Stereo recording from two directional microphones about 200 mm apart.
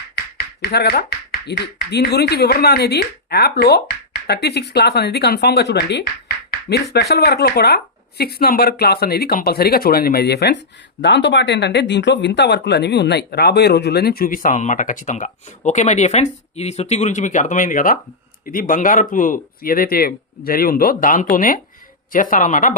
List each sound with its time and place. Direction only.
0.7 s speech: 55° left (ahead or behind)
6.5 s music: 55° left (ahead or behind)
6.9 s speech: 55° left (ahead or behind)